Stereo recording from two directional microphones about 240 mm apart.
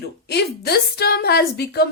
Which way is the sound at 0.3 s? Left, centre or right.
Left.